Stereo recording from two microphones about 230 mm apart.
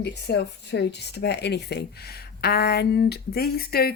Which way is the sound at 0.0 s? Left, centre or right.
Left.